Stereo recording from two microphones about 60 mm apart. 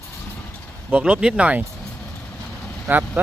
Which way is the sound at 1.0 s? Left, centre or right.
Centre.